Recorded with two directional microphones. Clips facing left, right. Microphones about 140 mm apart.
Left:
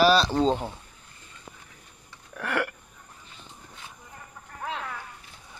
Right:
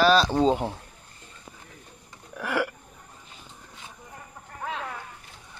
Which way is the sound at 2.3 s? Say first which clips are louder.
Right 1 dB; 5° right (ahead or behind).